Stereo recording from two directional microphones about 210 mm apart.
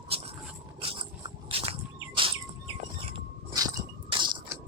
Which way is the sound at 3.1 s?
20° right (ahead or behind).